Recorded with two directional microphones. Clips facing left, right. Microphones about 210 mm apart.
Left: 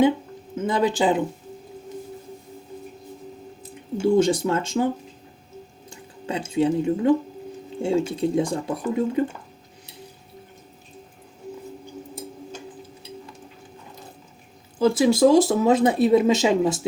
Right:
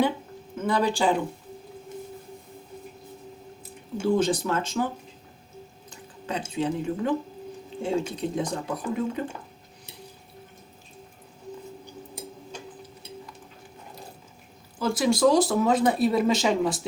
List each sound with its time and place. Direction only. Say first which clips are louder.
0.6 s speech: left 3 dB; 20° left (ahead or behind)
4.0 s speech: left 5 dB; 25° left (ahead or behind)
5.9 s drip: left 3 dB; 25° left (ahead or behind)
6.5 s speech: left 8 dB; 25° left (ahead or behind)
14.8 s speech: left 5 dB; 25° left (ahead or behind)